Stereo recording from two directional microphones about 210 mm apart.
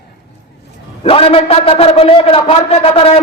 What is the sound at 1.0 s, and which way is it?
A man's voice, 25° left (ahead or behind).